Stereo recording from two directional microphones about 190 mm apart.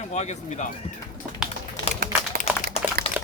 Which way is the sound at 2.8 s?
30° left (ahead or behind).